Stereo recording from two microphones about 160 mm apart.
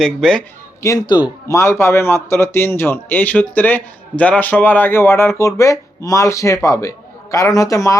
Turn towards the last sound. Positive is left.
turn(degrees=20)  # may be behind; listen again after turning